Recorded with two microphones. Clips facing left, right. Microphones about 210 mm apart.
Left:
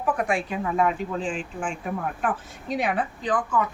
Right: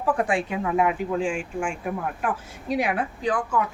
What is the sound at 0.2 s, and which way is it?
Speech, 25° right (ahead or behind).